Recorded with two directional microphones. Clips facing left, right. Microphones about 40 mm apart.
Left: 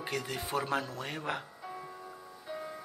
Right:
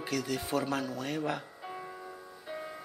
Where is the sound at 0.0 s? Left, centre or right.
Left.